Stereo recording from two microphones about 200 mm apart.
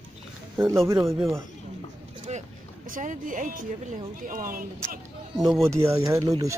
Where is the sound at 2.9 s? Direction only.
40° right (ahead or behind).